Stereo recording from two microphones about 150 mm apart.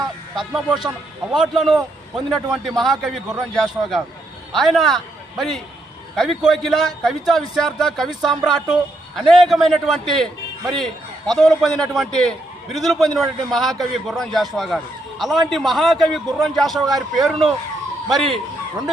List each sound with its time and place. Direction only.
0.3 s a man's voice: 5° right (ahead or behind)